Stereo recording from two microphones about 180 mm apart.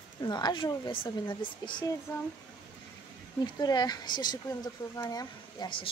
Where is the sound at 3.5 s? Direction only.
25° left (ahead or behind).